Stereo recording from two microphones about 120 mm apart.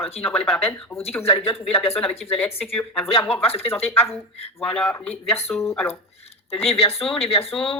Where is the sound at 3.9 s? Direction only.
20° left (ahead or behind).